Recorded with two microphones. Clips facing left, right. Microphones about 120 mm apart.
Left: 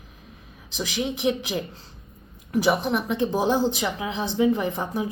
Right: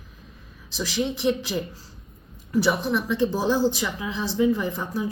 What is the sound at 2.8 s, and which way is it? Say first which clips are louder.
Speech: even; 55° left (ahead or behind).